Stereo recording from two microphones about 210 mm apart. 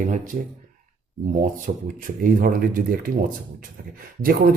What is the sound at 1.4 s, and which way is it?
Speech, 40° right (ahead or behind).